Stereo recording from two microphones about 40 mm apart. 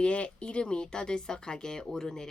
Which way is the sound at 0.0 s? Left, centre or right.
Left.